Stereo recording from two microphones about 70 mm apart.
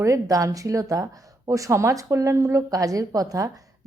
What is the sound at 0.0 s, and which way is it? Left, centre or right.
Speech, right.